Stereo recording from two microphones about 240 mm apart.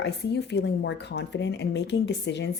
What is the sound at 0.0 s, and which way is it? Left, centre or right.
Speech, left.